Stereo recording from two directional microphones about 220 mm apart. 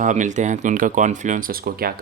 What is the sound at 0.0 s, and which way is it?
Speech, 35° right (ahead or behind).